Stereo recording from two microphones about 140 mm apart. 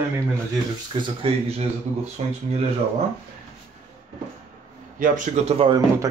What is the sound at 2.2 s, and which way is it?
Speech, 50° right (ahead or behind).